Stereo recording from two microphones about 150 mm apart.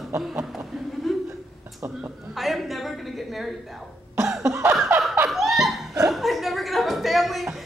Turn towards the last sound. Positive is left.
turn(degrees=0)  # may be behind; listen again after turning